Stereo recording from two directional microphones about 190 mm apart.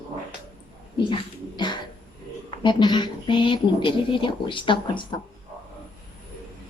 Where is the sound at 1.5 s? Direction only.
25° left (ahead or behind).